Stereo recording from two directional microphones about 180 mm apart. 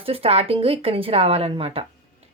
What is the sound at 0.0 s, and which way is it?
Speech, 35° right (ahead or behind).